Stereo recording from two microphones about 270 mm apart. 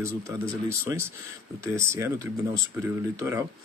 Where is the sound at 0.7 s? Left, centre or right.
Centre.